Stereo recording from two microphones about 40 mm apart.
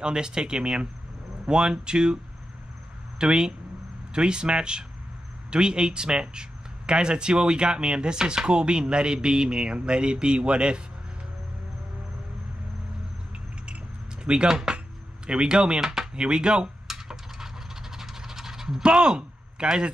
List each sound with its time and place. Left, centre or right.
0.0 s speech: right
3.2 s speech: right
14.2 s speech: right
15.8 s speech: centre
16.2 s speech: right
16.8 s a sound: centre
17.9 s pant: centre
18.8 s speech: right